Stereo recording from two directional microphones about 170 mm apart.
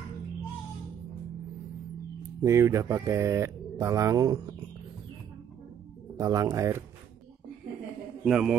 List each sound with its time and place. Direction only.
2.4 s speech: 15° right (ahead or behind)
6.1 s speech: 20° right (ahead or behind)
8.2 s a man's voice: 5° right (ahead or behind)